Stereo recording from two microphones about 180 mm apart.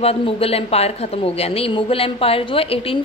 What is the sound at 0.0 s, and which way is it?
A woman's voice, 35° left (ahead or behind).